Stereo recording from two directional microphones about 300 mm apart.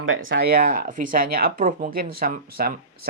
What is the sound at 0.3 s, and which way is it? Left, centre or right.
Speech, right.